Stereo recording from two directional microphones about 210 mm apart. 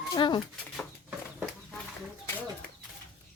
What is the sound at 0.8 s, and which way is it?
Bird, 5° right (ahead or behind).